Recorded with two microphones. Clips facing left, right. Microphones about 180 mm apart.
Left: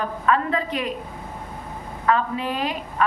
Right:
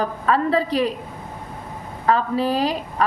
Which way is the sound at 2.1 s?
35° right (ahead or behind).